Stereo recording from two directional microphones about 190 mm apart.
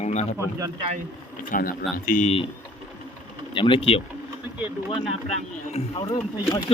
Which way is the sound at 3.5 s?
25° left (ahead or behind).